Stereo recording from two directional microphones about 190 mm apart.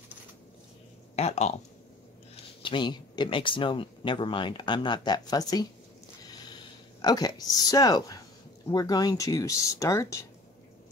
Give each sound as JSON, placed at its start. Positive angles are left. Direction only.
{"t": 1.1, "sound": "speech", "side_deg": 35}
{"t": 6.2, "sound": "a sound", "side_deg": 20}
{"t": 8.6, "sound": "speech", "side_deg": 20}